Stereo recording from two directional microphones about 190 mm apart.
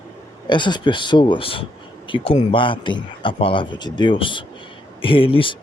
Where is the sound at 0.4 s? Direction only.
25° left (ahead or behind).